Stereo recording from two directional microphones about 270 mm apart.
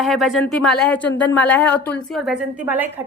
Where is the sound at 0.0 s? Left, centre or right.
Centre.